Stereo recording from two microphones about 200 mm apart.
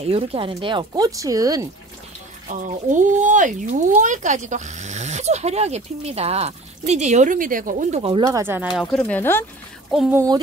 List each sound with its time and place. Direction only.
0.0 s speech: 30° right (ahead or behind)
2.4 s speech: 40° right (ahead or behind)
8.4 s speech: 10° right (ahead or behind)
8.9 s speech: 5° left (ahead or behind)
10.1 s speech: 20° right (ahead or behind)